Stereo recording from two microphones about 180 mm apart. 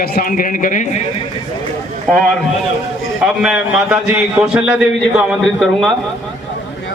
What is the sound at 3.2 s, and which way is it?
A man's voice, 5° right (ahead or behind).